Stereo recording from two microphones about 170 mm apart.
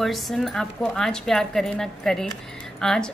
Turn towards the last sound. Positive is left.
turn(degrees=5)  # may be behind; listen again after turning